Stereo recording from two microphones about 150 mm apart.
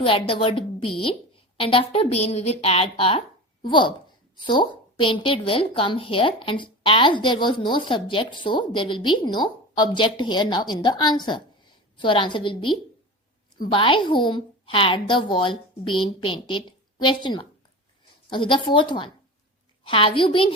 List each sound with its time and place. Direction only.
0.0 s a woman's voice: 35° left (ahead or behind)
13.7 s a woman's voice: 35° left (ahead or behind)